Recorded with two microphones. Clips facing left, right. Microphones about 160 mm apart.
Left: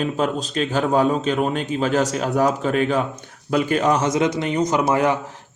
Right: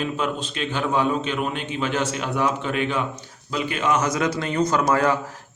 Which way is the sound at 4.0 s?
25° left (ahead or behind).